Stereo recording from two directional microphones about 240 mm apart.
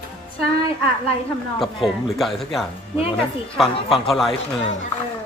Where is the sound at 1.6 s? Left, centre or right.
Centre.